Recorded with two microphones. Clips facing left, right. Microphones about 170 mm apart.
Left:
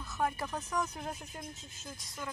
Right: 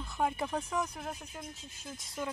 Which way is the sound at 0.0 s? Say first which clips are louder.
Right 2 dB; 20° right (ahead or behind).